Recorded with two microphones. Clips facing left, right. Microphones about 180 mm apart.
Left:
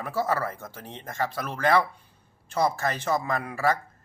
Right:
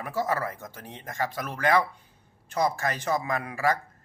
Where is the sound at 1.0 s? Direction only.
15° right (ahead or behind).